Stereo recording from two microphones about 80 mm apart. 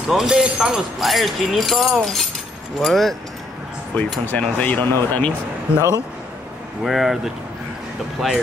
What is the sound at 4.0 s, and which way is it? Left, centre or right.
Speech, centre.